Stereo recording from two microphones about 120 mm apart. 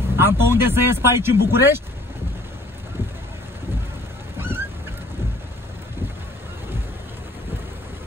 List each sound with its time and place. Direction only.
0.1 s speech: 20° right (ahead or behind)
4.4 s goose: 20° right (ahead or behind)